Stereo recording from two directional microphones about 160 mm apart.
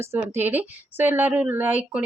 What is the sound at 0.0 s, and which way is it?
A woman's voice, 15° right (ahead or behind).